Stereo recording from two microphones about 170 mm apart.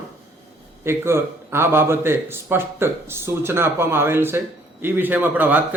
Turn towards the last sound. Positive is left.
turn(degrees=-10)  # may be behind; listen again after turning